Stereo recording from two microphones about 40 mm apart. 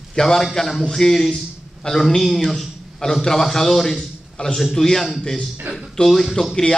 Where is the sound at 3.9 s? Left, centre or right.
Centre.